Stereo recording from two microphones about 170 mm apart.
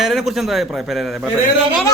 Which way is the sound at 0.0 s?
Centre (ahead or behind).